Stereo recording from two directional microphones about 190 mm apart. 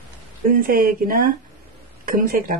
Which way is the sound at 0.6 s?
50° right (ahead or behind).